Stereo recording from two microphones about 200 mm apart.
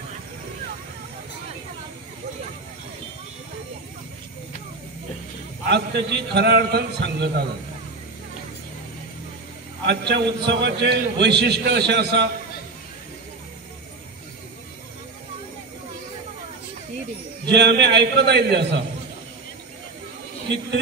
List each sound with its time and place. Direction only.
5.7 s a man's voice: 60° right (ahead or behind)
9.8 s a man's voice: 60° right (ahead or behind)
17.5 s a man's voice: 60° right (ahead or behind)